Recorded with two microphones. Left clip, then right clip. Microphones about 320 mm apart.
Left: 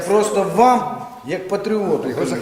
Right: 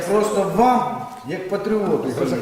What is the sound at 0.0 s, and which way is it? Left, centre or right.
A man's voice, centre.